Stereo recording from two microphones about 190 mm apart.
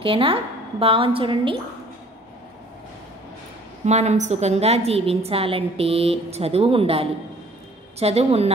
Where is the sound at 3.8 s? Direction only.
35° right (ahead or behind).